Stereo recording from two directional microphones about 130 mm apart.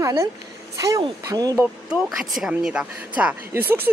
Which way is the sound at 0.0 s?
25° right (ahead or behind).